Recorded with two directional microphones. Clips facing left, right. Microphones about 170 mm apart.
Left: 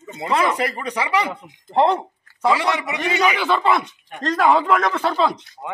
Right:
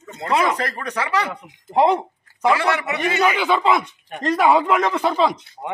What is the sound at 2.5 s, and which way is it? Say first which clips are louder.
Speech: right 1 dB; 15° left (ahead or behind).